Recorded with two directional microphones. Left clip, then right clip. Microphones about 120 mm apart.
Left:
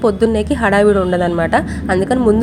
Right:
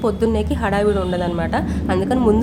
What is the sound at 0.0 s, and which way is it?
A woman's voice, 30° left (ahead or behind).